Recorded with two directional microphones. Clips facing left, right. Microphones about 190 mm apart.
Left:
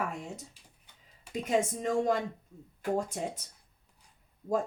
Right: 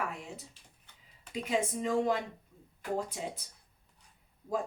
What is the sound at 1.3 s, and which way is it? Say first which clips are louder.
Speech: left 3 dB; 45° left (ahead or behind).